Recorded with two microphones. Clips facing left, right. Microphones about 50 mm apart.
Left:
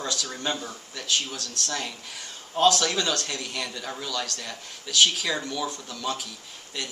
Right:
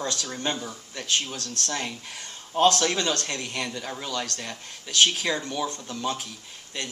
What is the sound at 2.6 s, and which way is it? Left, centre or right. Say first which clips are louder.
Speech: even; right.